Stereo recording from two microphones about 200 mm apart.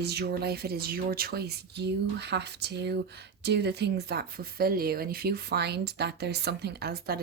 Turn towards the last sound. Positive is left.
turn(degrees=-50)  # may be behind; listen again after turning